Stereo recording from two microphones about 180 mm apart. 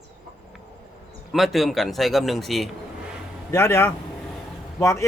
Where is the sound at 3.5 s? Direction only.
15° left (ahead or behind).